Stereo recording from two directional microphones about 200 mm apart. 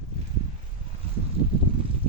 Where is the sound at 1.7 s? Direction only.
25° right (ahead or behind).